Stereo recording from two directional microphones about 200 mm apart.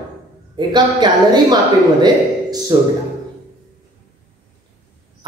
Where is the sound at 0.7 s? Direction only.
20° right (ahead or behind).